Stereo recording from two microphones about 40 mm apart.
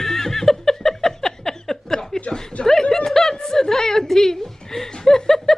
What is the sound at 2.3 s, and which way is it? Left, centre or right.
Chuckle, centre.